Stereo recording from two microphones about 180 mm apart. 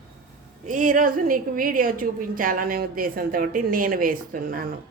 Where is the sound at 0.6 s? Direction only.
45° right (ahead or behind).